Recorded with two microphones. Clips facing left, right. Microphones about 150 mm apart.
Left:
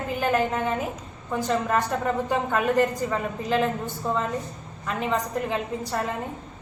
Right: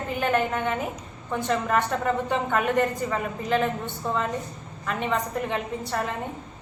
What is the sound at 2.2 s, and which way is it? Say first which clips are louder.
A woman's voice: left 1 dB; centre (ahead or behind).